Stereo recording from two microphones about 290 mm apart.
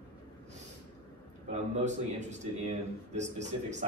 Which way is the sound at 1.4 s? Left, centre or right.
Right.